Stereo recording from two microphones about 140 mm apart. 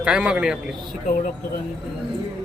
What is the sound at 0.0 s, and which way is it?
Speech, 5° right (ahead or behind).